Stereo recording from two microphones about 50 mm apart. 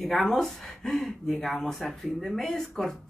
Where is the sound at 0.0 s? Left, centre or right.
Centre.